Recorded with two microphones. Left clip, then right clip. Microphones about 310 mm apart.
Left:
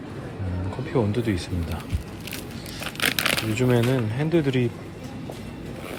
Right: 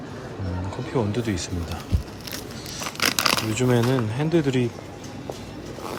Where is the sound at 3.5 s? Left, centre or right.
Centre.